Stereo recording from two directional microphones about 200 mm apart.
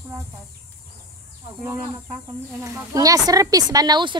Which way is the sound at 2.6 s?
15° right (ahead or behind).